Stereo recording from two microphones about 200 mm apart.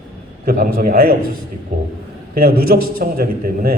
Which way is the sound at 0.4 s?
45° right (ahead or behind).